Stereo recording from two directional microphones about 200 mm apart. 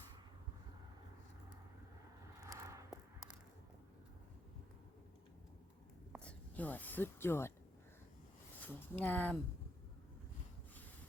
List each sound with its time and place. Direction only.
2.4 s a sound: 15° right (ahead or behind)
6.2 s speech: 10° left (ahead or behind)
8.6 s speech: 10° left (ahead or behind)